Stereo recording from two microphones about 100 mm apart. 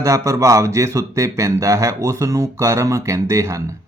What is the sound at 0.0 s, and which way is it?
Speech, 30° right (ahead or behind).